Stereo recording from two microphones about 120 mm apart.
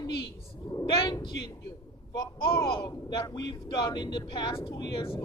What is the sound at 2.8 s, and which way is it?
Speech, 35° left (ahead or behind).